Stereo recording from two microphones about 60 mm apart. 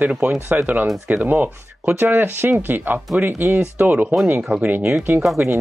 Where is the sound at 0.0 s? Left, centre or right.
Right.